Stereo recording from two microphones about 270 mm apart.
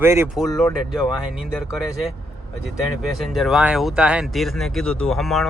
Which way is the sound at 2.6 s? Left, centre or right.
Centre.